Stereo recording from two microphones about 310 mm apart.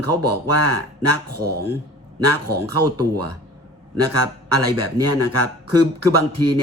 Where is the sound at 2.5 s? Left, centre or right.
Right.